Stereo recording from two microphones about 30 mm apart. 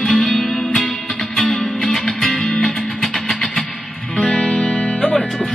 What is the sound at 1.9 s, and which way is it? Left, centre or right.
Music, centre.